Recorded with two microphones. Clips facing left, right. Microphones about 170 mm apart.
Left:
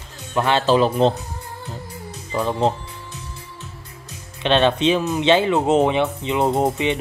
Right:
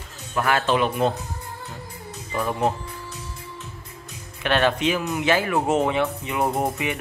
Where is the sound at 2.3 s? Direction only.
20° left (ahead or behind).